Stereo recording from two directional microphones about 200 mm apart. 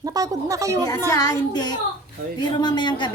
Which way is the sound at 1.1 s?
20° left (ahead or behind).